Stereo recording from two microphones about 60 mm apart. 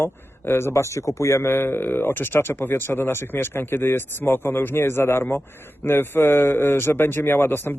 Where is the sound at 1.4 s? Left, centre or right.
Left.